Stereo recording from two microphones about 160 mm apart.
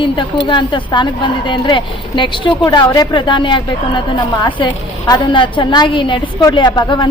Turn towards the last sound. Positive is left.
turn(degrees=25)  # may be behind; listen again after turning